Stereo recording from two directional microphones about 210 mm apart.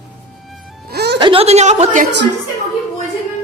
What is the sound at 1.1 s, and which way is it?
Speech, 25° right (ahead or behind).